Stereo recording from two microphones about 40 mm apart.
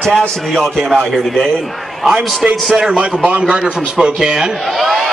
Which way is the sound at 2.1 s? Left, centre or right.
Right.